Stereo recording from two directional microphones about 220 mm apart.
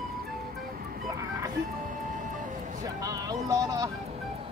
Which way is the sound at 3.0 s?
15° right (ahead or behind).